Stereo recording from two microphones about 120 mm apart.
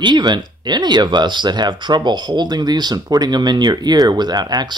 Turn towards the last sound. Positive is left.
turn(degrees=-35)  # may be behind; listen again after turning